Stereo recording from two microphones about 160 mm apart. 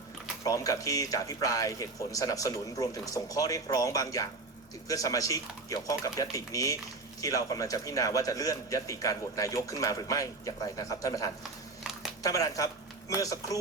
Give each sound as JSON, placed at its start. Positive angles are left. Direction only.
{"t": 0.4, "sound": "a man's voice", "side_deg": 20}